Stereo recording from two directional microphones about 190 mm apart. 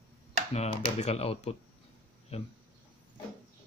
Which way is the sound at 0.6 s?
35° left (ahead or behind).